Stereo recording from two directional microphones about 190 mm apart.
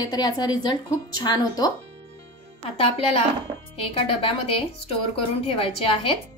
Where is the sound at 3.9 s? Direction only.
30° left (ahead or behind).